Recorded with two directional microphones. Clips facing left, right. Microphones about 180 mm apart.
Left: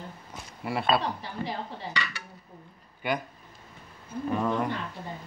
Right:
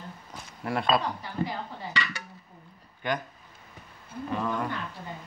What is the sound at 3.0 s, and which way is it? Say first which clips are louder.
Speech: left 1 dB; 10° left (ahead or behind).